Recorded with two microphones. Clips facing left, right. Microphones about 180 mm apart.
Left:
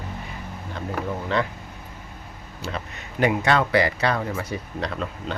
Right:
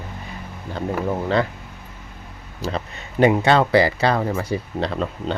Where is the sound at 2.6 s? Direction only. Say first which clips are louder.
Right 5 dB; 30° right (ahead or behind).